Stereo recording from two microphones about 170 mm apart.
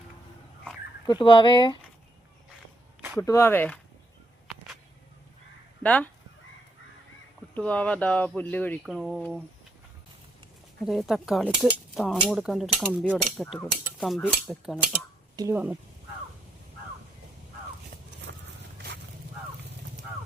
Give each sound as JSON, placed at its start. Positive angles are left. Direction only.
{"t": 1.0, "sound": "speech", "side_deg": 25}
{"t": 3.2, "sound": "speech", "side_deg": 15}
{"t": 5.8, "sound": "speech", "side_deg": 5}
{"t": 7.5, "sound": "speech", "side_deg": 10}
{"t": 8.8, "sound": "speech", "side_deg": 0}
{"t": 10.8, "sound": "speech", "side_deg": 0}
{"t": 15.4, "sound": "speech", "side_deg": -15}